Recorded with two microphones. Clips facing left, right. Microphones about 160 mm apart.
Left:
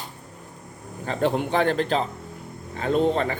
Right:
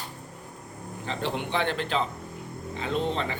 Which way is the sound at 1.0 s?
45° left (ahead or behind).